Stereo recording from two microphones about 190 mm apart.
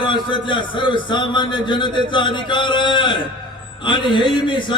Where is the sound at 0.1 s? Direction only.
25° left (ahead or behind).